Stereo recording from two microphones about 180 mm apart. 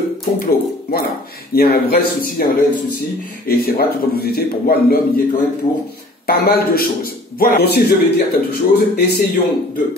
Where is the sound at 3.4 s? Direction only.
55° left (ahead or behind).